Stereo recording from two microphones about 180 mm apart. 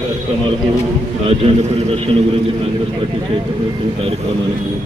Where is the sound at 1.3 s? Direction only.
30° right (ahead or behind).